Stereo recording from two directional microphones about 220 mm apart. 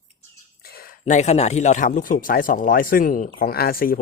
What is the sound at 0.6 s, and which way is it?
Speech, 45° left (ahead or behind).